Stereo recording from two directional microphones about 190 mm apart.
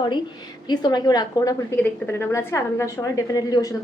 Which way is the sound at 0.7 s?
20° left (ahead or behind).